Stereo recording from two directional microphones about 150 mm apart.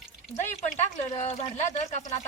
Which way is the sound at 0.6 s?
50° left (ahead or behind).